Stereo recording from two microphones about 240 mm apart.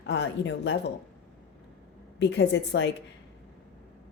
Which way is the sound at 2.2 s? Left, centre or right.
Left.